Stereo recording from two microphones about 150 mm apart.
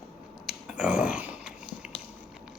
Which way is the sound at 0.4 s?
5° right (ahead or behind).